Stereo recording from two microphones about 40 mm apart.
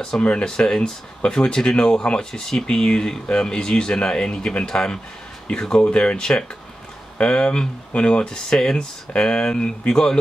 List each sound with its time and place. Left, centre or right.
0.2 s speech: left
0.5 s speech: centre
5.8 s speech: left